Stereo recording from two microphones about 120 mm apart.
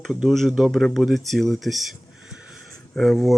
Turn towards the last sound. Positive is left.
turn(degrees=0)  # may be behind; listen again after turning